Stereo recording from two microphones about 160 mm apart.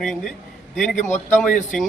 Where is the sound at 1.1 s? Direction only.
10° left (ahead or behind).